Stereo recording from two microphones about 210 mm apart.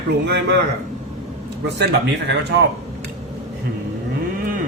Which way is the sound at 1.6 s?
55° right (ahead or behind).